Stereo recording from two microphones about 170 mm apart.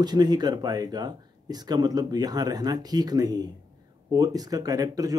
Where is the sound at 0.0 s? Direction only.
25° right (ahead or behind).